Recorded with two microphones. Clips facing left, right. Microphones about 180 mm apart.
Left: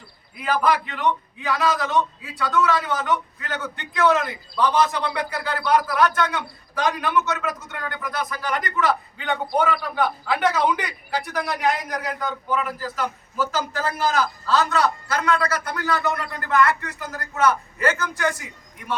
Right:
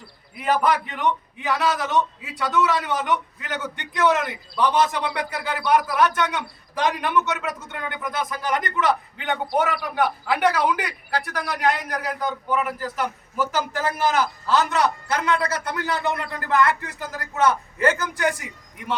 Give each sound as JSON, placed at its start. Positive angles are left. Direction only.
{"t": 0.4, "sound": "a man's voice", "side_deg": -20}
{"t": 4.5, "sound": "a man's voice", "side_deg": -20}